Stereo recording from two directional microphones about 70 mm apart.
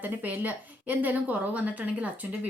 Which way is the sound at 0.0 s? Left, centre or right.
Right.